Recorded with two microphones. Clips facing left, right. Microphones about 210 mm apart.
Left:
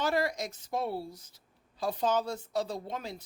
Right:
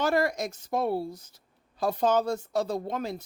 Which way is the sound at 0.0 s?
50° right (ahead or behind).